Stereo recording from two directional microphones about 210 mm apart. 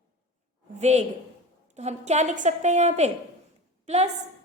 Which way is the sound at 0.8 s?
30° right (ahead or behind).